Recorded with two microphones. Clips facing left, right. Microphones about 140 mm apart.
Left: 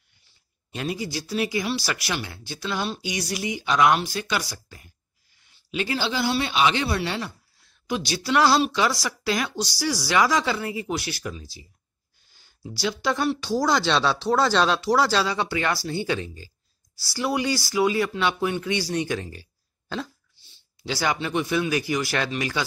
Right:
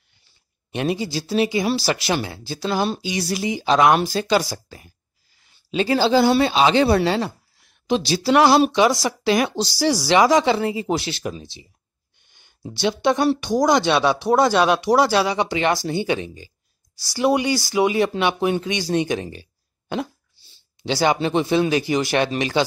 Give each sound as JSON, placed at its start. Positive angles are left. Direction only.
{"t": 0.7, "sound": "speech", "side_deg": -25}
{"t": 7.6, "sound": "speech", "side_deg": -25}
{"t": 12.3, "sound": "a sound", "side_deg": -20}
{"t": 12.6, "sound": "speech", "side_deg": -25}
{"t": 20.4, "sound": "a sound", "side_deg": -35}
{"t": 20.8, "sound": "speech", "side_deg": -25}